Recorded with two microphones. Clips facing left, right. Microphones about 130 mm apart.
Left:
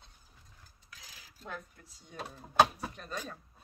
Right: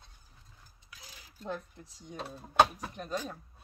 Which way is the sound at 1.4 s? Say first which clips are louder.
Right 5 dB; 25° right (ahead or behind).